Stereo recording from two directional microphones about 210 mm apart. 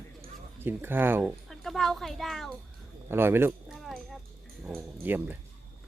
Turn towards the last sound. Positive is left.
turn(degrees=-10)  # may be behind; listen again after turning